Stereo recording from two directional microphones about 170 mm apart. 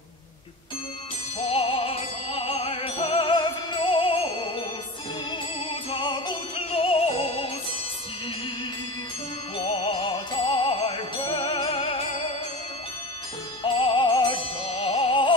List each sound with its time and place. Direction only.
1.5 s music: 30° left (ahead or behind)
5.7 s music: 30° left (ahead or behind)
9.6 s music: 30° left (ahead or behind)
13.6 s music: 30° left (ahead or behind)